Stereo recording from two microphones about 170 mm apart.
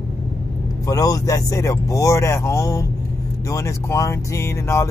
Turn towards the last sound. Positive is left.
turn(degrees=15)  # may be behind; listen again after turning